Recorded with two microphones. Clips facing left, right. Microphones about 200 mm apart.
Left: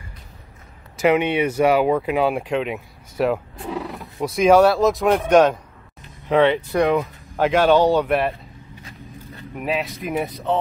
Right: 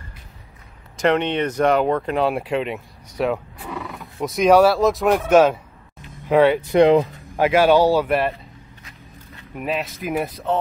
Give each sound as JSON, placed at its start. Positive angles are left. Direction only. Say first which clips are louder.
{"t": 0.9, "sound": "speech", "louder": "left 1 dB", "side_deg": 5}
{"t": 6.8, "sound": "speech", "louder": "right 6 dB", "side_deg": -30}
{"t": 7.3, "sound": "speech", "louder": "right 1 dB", "side_deg": -10}
{"t": 9.6, "sound": "speech", "louder": "left 1 dB", "side_deg": 0}